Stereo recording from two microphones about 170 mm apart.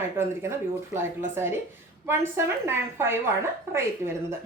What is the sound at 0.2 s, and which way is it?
A woman's voice, 15° right (ahead or behind).